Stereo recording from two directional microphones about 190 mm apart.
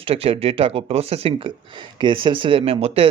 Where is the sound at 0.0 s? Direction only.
30° right (ahead or behind).